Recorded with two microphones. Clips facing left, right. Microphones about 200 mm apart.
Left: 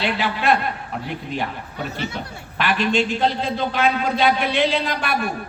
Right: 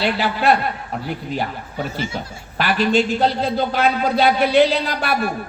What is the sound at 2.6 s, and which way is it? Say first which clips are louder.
A man's voice: right 3 dB; 40° right (ahead or behind).